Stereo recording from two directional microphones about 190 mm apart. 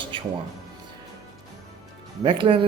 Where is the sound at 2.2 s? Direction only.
25° right (ahead or behind).